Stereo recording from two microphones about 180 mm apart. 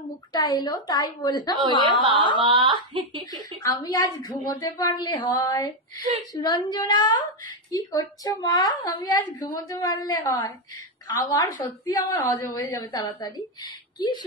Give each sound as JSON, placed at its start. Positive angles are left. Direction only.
{"t": 0.3, "sound": "a woman's voice", "side_deg": 25}
{"t": 1.8, "sound": "speech", "side_deg": -25}
{"t": 3.3, "sound": "a woman's voice", "side_deg": 20}